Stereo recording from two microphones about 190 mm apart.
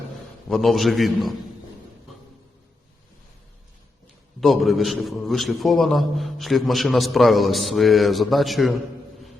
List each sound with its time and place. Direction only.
0.4 s a man's voice: centre (ahead or behind)
4.4 s a man's voice: centre (ahead or behind)